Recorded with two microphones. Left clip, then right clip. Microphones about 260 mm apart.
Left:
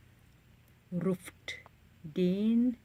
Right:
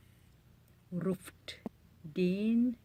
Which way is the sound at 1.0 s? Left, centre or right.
Centre.